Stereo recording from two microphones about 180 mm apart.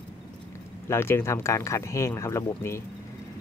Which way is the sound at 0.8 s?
15° left (ahead or behind).